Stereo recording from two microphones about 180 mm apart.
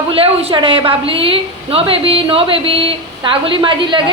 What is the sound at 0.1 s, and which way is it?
A woman's voice, 30° right (ahead or behind).